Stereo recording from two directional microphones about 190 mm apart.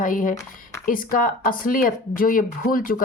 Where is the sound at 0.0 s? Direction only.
45° left (ahead or behind).